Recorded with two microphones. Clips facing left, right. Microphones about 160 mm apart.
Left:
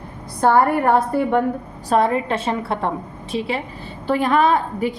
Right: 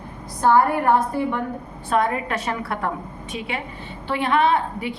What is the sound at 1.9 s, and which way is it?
A woman's voice, 30° left (ahead or behind).